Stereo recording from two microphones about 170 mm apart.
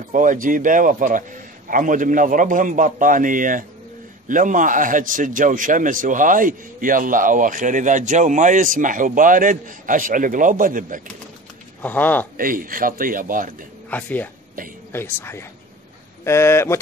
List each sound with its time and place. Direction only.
0.1 s a man's voice: 50° right (ahead or behind)
11.8 s speech: 10° left (ahead or behind)
12.4 s a man's voice: 55° right (ahead or behind)
13.8 s speech: 10° left (ahead or behind)